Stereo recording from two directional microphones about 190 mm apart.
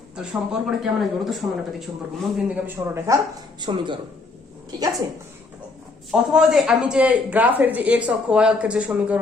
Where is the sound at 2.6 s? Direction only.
15° right (ahead or behind).